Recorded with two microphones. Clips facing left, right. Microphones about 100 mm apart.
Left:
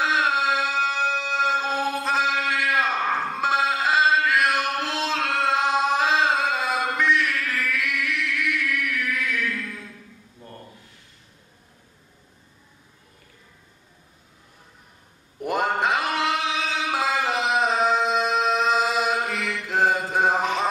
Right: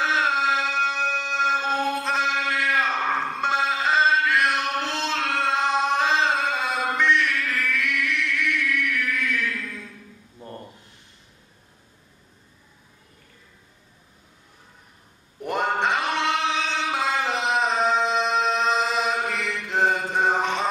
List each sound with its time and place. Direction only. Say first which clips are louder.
0.0 s music: even; centre (ahead or behind)
10.4 s a sound: right 4 dB; 25° right (ahead or behind)
15.4 s male singing: left 1 dB; centre (ahead or behind)